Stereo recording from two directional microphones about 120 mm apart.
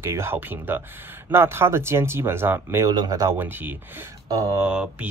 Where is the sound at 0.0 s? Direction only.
20° right (ahead or behind).